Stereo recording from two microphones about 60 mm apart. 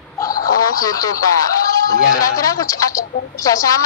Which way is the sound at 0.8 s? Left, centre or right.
Left.